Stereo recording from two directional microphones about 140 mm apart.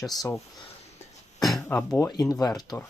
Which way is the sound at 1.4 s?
Centre (ahead or behind).